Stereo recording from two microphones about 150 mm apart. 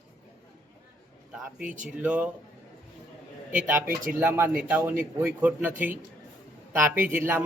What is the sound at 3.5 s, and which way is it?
A man's voice, 15° right (ahead or behind).